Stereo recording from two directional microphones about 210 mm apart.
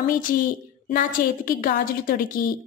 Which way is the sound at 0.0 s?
40° left (ahead or behind).